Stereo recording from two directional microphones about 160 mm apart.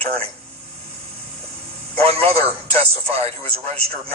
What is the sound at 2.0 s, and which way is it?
A man's voice, 40° right (ahead or behind).